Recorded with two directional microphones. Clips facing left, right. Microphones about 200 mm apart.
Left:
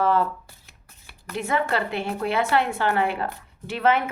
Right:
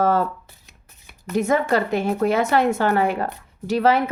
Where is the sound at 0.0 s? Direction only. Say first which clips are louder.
Right 2 dB; 45° right (ahead or behind).